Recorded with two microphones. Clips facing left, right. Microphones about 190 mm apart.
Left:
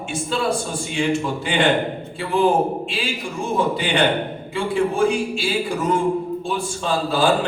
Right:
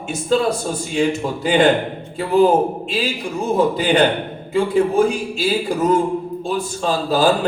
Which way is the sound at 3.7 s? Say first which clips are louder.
Right 3 dB; 40° right (ahead or behind).